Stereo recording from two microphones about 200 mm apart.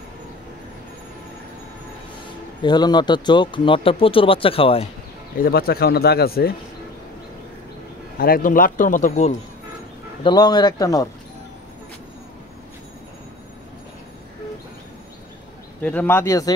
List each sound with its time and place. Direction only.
2.6 s speech: 20° left (ahead or behind)
5.4 s speech: 50° left (ahead or behind)
8.2 s speech: 45° left (ahead or behind)
10.2 s speech: 20° left (ahead or behind)
15.8 s speech: 10° left (ahead or behind)